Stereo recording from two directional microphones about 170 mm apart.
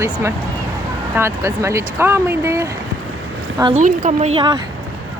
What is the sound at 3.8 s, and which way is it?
Speech, 45° right (ahead or behind).